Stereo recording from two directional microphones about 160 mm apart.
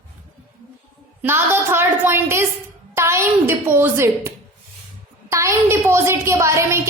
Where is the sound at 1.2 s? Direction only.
15° right (ahead or behind).